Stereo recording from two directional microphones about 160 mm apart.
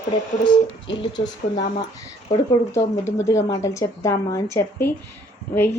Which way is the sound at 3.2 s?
20° left (ahead or behind).